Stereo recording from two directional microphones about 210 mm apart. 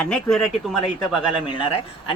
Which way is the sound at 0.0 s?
5° left (ahead or behind).